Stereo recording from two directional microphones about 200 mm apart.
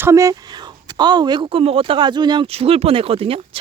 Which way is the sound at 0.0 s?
15° right (ahead or behind).